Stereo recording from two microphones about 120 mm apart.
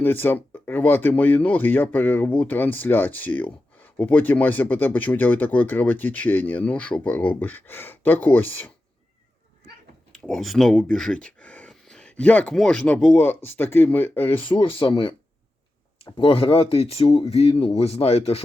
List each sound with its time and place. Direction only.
0.0 s speech: 15° left (ahead or behind)
10.1 s speech: centre (ahead or behind)
14.4 s speech: 45° left (ahead or behind)
16.1 s speech: 45° left (ahead or behind)